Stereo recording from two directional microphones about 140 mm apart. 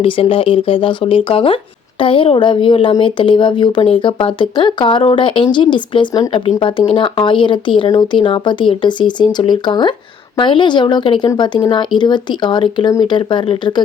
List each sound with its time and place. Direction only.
0.0 s speech: 40° left (ahead or behind)